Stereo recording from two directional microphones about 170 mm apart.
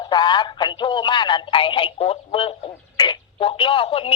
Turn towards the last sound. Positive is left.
turn(degrees=30)  # may be behind; listen again after turning